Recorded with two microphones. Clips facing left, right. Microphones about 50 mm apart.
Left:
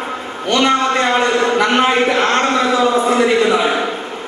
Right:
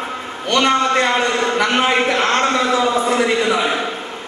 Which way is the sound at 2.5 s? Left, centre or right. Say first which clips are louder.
Left 2 dB; left.